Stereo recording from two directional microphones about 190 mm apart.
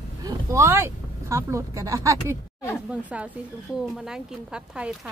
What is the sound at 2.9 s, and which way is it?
A woman's voice, 5° right (ahead or behind).